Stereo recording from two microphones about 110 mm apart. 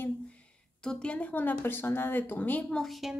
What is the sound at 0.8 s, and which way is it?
A woman's voice, 10° left (ahead or behind).